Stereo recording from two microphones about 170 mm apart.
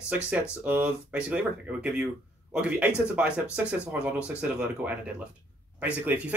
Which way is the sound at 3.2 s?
5° right (ahead or behind).